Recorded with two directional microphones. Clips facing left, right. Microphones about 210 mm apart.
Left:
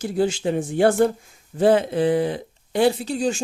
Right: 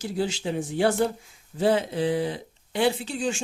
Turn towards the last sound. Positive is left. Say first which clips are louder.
# left 5 dB
turn(degrees=40)  # may be behind; listen again after turning